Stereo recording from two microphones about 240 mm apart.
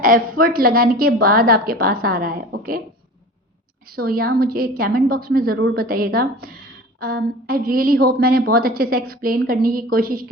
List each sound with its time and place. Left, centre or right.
0.0 s a woman's voice: right
3.8 s a woman's voice: right